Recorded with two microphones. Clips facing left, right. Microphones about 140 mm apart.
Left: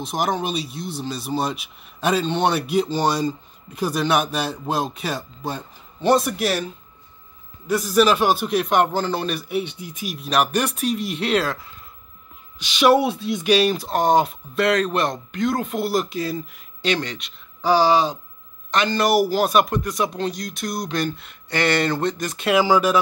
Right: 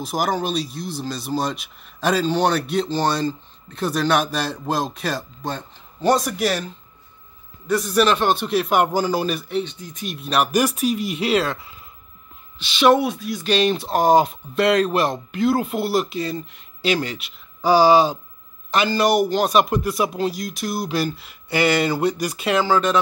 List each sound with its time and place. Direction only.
0.0 s speech: 5° right (ahead or behind)
12.5 s speech: 15° left (ahead or behind)
13.0 s speech: 25° left (ahead or behind)
13.4 s speech: 10° left (ahead or behind); by 22.5 s 10° right (ahead or behind)
22.5 s speech: 10° left (ahead or behind)